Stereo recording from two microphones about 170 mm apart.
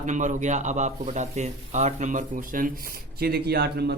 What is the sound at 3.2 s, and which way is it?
Speech, 65° right (ahead or behind).